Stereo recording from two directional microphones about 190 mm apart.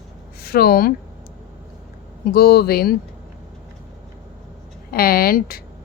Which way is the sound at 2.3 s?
55° left (ahead or behind).